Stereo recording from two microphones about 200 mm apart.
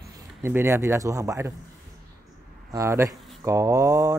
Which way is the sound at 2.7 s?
15° right (ahead or behind).